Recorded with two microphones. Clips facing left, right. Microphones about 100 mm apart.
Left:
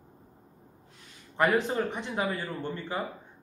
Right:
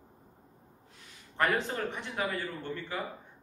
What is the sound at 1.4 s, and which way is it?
Speech, 15° left (ahead or behind).